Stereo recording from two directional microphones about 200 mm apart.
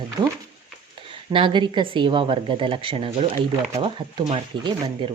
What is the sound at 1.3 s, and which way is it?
Speech, 25° right (ahead or behind).